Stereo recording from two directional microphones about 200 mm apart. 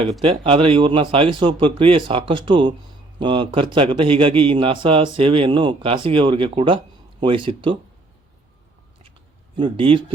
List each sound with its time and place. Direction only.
0.0 s a man's voice: 30° right (ahead or behind)
9.6 s a man's voice: 25° right (ahead or behind)